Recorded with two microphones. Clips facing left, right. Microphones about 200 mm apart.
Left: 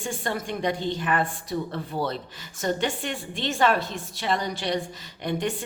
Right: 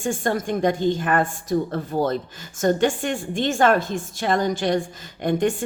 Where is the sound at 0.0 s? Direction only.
45° right (ahead or behind).